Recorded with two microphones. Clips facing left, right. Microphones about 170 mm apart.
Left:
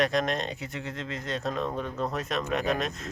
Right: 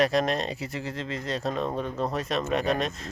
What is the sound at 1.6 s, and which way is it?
Speech, 30° right (ahead or behind).